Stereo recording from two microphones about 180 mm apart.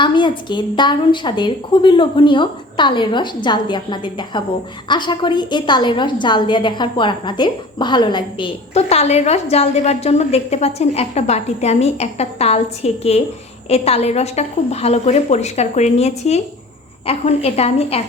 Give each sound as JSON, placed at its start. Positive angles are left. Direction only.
{"t": 0.0, "sound": "a woman's voice", "side_deg": 25}